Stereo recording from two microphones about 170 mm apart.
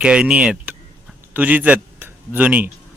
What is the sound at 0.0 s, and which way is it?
Speech, 5° right (ahead or behind).